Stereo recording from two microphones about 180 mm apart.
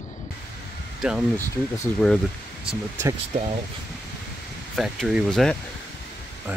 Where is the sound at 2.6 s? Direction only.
15° right (ahead or behind).